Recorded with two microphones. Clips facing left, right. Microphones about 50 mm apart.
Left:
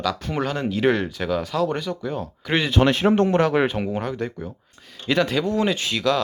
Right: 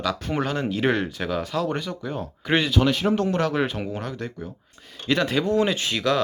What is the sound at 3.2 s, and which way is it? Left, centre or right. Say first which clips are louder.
Speech: left 4 dB; left.